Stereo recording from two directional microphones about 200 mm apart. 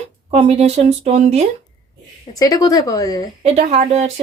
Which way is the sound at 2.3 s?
15° left (ahead or behind).